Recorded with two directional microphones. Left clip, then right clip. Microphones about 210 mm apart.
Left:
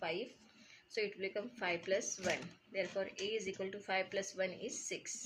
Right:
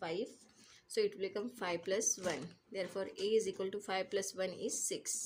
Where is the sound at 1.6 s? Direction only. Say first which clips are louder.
Right 1 dB; 65° right (ahead or behind).